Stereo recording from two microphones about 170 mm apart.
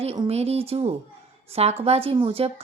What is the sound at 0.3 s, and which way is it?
A woman's voice, 35° right (ahead or behind).